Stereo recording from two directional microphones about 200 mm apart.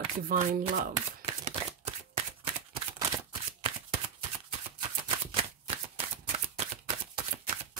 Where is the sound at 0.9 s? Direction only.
25° right (ahead or behind).